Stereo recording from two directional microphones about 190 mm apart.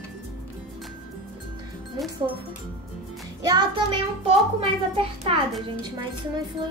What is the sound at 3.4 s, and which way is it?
Child singing, 25° right (ahead or behind).